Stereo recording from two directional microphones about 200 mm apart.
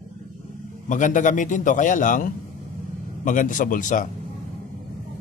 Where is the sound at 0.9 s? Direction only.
40° left (ahead or behind).